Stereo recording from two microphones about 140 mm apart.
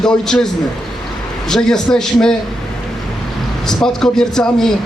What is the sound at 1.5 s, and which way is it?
Speech, 5° left (ahead or behind).